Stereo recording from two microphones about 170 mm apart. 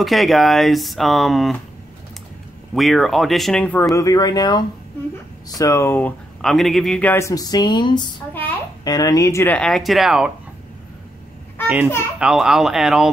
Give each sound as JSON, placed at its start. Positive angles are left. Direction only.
{"t": 0.0, "sound": "speech", "side_deg": 0}
{"t": 2.7, "sound": "speech", "side_deg": 0}
{"t": 8.3, "sound": "a sound", "side_deg": 10}
{"t": 8.8, "sound": "speech", "side_deg": 20}
{"t": 11.6, "sound": "children playing", "side_deg": -10}
{"t": 12.2, "sound": "speech", "side_deg": -5}